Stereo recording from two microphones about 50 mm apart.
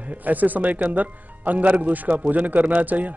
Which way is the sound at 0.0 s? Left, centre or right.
Right.